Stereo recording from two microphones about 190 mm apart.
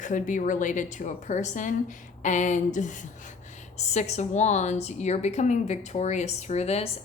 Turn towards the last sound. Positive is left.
turn(degrees=35)  # may be behind; listen again after turning